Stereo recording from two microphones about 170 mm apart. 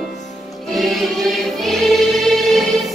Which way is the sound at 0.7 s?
Centre (ahead or behind).